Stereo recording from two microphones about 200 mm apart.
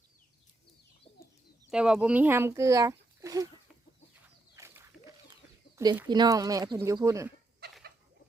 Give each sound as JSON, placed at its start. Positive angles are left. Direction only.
{"t": 1.7, "sound": "speech", "side_deg": -5}
{"t": 4.5, "sound": "a sound", "side_deg": -15}
{"t": 5.7, "sound": "speech", "side_deg": -15}
{"t": 7.6, "sound": "fowl", "side_deg": -55}